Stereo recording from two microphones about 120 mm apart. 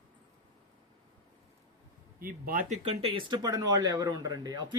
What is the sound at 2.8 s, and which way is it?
Speech, 45° right (ahead or behind).